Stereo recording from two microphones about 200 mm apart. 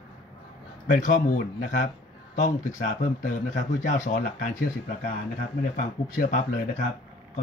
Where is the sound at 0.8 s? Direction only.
40° left (ahead or behind).